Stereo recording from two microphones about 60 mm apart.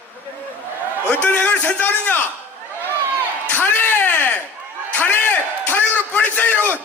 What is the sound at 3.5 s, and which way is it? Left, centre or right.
Speech, left.